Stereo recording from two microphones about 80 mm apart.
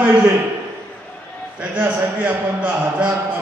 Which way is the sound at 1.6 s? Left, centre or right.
Centre.